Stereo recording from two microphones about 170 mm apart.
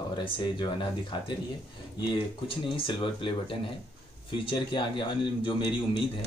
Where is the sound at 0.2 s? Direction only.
30° left (ahead or behind).